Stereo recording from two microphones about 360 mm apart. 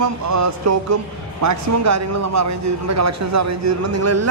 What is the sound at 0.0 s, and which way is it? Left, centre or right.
A man's voice, right.